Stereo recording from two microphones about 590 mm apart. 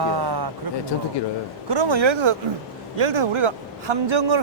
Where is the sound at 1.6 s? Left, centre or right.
Right.